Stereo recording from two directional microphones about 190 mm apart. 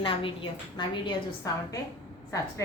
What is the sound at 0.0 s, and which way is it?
Speech, 25° left (ahead or behind).